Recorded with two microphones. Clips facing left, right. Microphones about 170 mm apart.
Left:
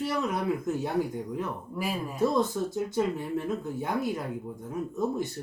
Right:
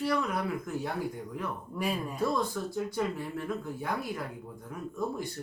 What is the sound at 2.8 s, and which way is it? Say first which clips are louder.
Speech: left 4 dB; 25° left (ahead or behind).